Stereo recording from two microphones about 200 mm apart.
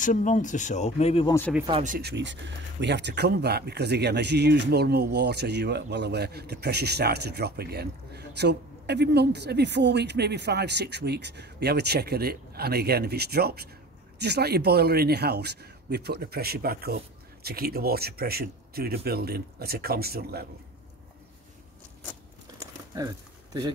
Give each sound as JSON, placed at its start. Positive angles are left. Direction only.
{"t": 0.0, "sound": "speech", "side_deg": 40}
{"t": 2.0, "sound": "a man's voice", "side_deg": -60}
{"t": 22.9, "sound": "a sound", "side_deg": -15}